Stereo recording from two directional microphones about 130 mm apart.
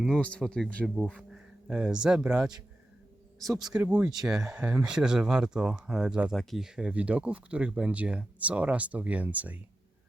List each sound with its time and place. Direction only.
0.1 s speech: 10° left (ahead or behind)
1.1 s speech: 5° right (ahead or behind)
3.6 s speech: 5° right (ahead or behind)